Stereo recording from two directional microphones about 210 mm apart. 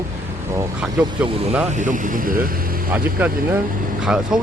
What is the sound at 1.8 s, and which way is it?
Speech, 40° right (ahead or behind).